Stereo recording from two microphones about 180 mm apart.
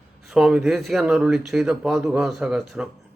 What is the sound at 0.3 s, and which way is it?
Speech, centre (ahead or behind).